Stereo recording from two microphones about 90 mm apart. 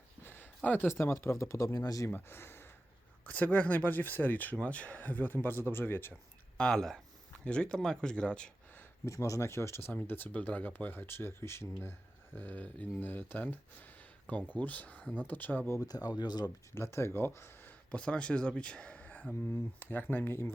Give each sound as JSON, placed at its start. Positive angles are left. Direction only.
{"t": 0.2, "sound": "a sound", "side_deg": 25}
{"t": 0.9, "sound": "speech", "side_deg": 30}
{"t": 2.0, "sound": "speech", "side_deg": 25}
{"t": 6.6, "sound": "speech", "side_deg": 5}
{"t": 9.0, "sound": "speech", "side_deg": 35}
{"t": 9.9, "sound": "speech", "side_deg": 20}
{"t": 15.8, "sound": "speech", "side_deg": 45}
{"t": 16.7, "sound": "speech", "side_deg": 30}